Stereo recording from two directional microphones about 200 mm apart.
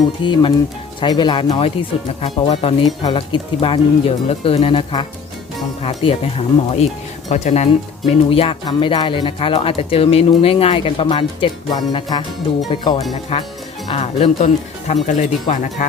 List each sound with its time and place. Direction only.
0.2 s speech: 25° left (ahead or behind)